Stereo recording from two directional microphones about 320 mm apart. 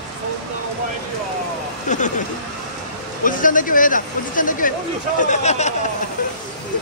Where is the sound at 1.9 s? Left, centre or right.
Left.